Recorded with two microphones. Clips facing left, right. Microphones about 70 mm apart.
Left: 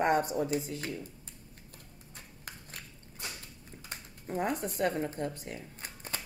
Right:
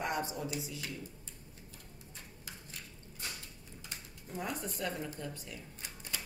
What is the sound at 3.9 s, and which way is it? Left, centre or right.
Speech, left.